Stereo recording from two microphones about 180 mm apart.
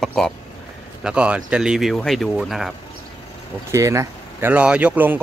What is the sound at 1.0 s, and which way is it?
Speech, 5° right (ahead or behind).